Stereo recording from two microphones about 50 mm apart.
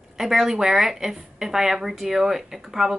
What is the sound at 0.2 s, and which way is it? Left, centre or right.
A woman's voice, centre.